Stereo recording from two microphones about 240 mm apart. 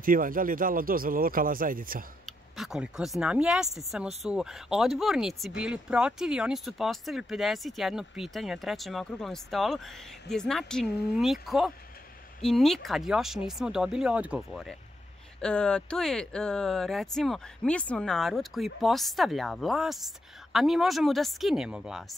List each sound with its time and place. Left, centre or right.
0.0 s speech: right
2.2 s speech: centre